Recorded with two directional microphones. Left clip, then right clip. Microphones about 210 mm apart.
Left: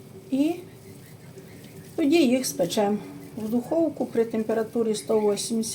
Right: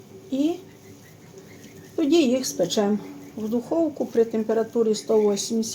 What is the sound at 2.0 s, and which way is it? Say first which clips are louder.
Speech: right 1 dB; 25° right (ahead or behind).